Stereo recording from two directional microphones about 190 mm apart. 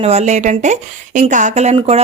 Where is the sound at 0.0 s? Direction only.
35° right (ahead or behind).